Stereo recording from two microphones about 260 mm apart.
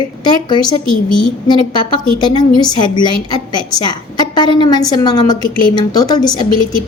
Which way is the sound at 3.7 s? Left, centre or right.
Centre.